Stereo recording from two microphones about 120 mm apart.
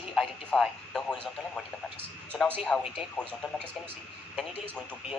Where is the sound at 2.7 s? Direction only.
10° left (ahead or behind).